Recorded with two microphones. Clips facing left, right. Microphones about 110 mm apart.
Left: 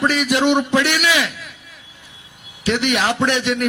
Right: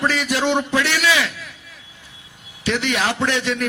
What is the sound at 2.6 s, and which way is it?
A man's voice, 20° left (ahead or behind).